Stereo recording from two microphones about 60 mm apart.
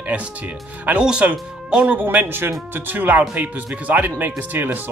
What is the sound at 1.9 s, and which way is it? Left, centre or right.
Speech, right.